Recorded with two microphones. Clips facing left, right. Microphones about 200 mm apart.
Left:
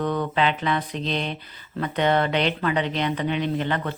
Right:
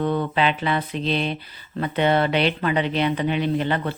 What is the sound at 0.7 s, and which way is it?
Speech, 10° right (ahead or behind).